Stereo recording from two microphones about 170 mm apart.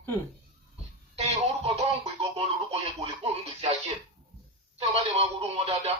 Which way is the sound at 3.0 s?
40° right (ahead or behind).